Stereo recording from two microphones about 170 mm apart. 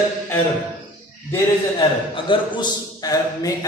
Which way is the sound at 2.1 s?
30° left (ahead or behind).